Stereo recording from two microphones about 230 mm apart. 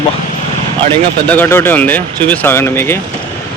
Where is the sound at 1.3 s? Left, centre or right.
Centre.